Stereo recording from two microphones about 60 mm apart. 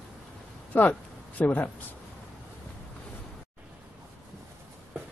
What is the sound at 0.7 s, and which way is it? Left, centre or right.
Speech, left.